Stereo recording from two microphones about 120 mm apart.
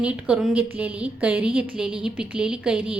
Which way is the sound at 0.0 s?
10° right (ahead or behind).